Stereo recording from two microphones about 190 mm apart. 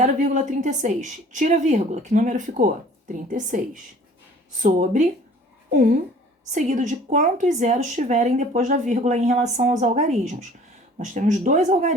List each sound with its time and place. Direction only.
0.0 s a woman's voice: 40° right (ahead or behind)
4.6 s a woman's voice: 40° right (ahead or behind)